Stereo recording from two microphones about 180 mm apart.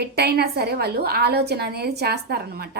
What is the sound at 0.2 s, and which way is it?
A woman's voice, 65° right (ahead or behind).